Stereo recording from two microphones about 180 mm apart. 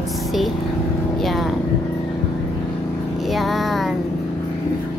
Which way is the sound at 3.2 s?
Centre (ahead or behind).